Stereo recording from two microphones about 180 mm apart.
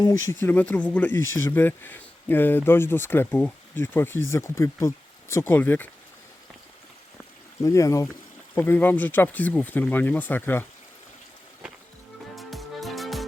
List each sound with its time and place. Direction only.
0.4 s speech: 10° left (ahead or behind)
7.6 s speech: 15° left (ahead or behind)
12.4 s music: centre (ahead or behind)